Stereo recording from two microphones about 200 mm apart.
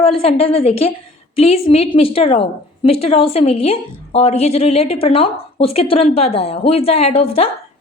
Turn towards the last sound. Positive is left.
turn(degrees=30)  # may be behind; listen again after turning